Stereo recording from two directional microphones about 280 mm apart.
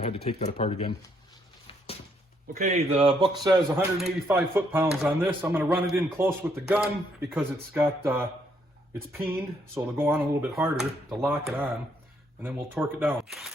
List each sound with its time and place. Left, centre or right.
0.3 s speech: left
2.5 s a man's voice: right
3.8 s speech: centre
9.1 s speech: centre